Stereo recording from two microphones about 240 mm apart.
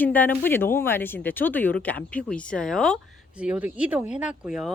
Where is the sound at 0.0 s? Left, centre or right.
Centre.